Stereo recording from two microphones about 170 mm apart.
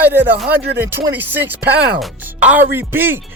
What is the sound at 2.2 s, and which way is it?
Speech, 10° right (ahead or behind).